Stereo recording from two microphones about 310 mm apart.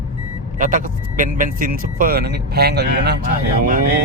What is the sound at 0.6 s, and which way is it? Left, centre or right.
Speech, right.